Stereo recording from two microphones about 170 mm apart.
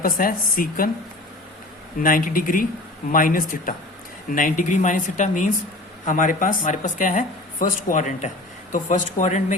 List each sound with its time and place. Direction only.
0.0 s a woman's voice: 55° left (ahead or behind)
2.0 s a woman's voice: 55° left (ahead or behind)